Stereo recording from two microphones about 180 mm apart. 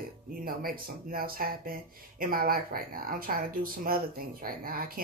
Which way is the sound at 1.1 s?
55° right (ahead or behind).